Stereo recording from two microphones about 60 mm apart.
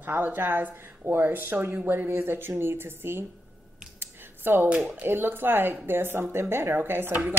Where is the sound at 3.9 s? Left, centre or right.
Right.